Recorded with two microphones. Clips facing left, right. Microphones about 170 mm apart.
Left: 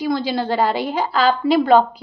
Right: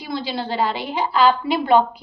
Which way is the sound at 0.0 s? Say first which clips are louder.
Left 6 dB; 45° left (ahead or behind).